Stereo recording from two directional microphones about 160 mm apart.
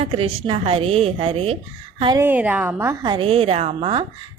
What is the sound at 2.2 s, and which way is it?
Speech, 10° right (ahead or behind).